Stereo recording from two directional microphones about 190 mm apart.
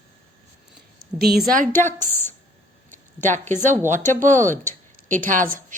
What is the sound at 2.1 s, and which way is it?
Speech, 10° left (ahead or behind).